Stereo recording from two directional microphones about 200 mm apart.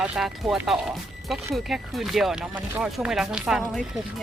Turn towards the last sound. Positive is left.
turn(degrees=0)  # may be behind; listen again after turning